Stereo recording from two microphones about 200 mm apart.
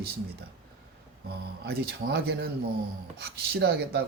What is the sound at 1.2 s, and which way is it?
Speech, 50° right (ahead or behind).